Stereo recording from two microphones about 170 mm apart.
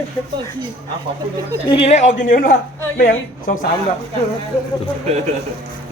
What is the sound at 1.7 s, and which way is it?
A man's voice, 35° left (ahead or behind).